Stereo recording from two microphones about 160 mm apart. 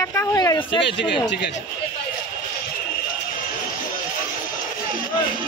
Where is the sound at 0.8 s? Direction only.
90° left.